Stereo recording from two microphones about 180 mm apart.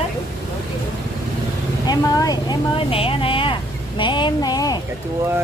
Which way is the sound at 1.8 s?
20° left (ahead or behind).